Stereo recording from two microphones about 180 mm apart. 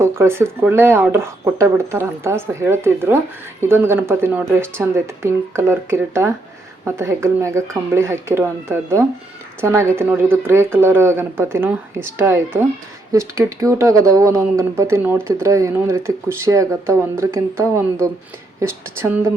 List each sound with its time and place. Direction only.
0.0 s speech: 15° right (ahead or behind)